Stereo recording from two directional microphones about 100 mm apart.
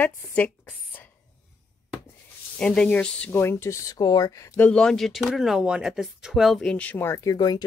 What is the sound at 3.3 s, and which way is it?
Speech, 25° left (ahead or behind).